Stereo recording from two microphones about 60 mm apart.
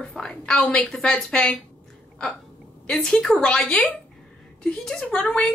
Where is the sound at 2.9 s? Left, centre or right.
Centre.